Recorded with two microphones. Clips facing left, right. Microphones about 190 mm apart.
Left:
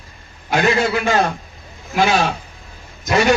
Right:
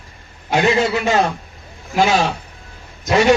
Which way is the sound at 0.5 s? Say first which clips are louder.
Right 1 dB; 25° right (ahead or behind).